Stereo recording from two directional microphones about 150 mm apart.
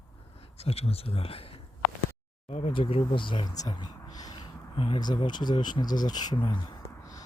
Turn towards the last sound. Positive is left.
turn(degrees=25)  # may be behind; listen again after turning